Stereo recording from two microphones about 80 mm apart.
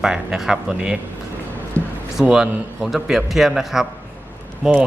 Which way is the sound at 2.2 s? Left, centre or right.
Centre.